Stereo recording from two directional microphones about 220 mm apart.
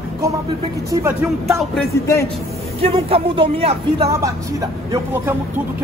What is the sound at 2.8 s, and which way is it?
Speech, 25° right (ahead or behind).